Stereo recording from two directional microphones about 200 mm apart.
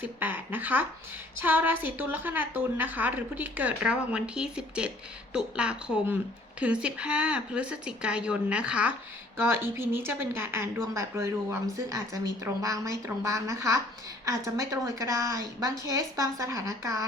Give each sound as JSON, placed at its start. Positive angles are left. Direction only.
{"t": 0.0, "sound": "a woman's voice", "side_deg": -10}